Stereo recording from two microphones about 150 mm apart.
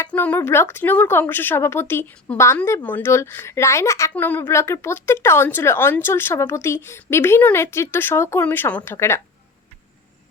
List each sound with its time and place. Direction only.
0.1 s a woman's voice: 10° left (ahead or behind)